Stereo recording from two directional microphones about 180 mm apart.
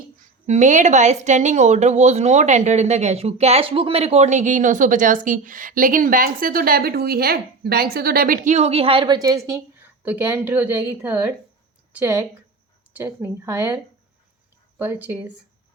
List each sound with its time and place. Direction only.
0.2 s a woman's voice: 40° right (ahead or behind); by 12.2 s 10° right (ahead or behind)
13.2 s speech: 15° right (ahead or behind)
14.8 s speech: 10° right (ahead or behind)